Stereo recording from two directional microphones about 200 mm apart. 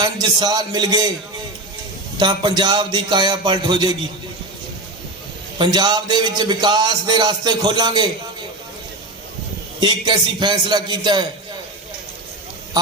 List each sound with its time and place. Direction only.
0.0 s a man's voice: 20° right (ahead or behind)
2.1 s a man's voice: 20° right (ahead or behind)
5.5 s a man's voice: 20° right (ahead or behind)
9.8 s a man's voice: 25° right (ahead or behind)